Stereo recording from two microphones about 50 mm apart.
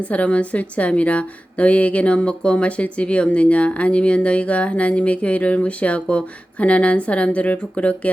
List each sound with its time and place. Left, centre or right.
0.0 s a woman's voice: left